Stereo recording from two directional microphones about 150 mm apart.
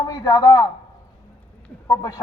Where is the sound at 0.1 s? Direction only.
25° left (ahead or behind).